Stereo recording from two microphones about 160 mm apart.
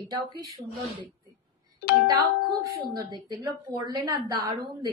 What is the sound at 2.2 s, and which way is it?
A woman's voice, 25° right (ahead or behind).